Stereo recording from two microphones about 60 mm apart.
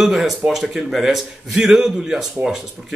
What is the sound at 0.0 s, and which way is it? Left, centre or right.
Speech, centre.